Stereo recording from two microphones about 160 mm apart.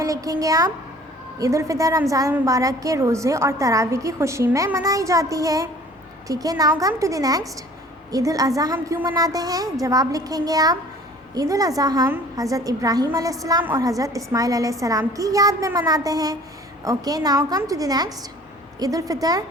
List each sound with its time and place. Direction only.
0.0 s a woman's voice: 20° right (ahead or behind)